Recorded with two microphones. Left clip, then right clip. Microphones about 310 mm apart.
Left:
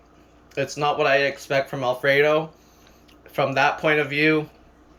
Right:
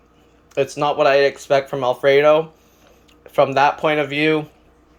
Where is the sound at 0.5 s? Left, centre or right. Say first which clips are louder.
Right 4 dB; centre.